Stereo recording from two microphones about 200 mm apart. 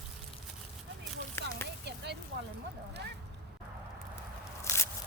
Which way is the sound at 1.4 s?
15° left (ahead or behind).